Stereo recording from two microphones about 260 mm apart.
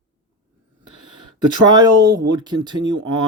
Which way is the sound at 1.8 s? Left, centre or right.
Centre.